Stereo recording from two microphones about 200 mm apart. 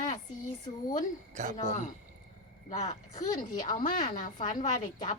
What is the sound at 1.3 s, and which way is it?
Speech, 40° right (ahead or behind).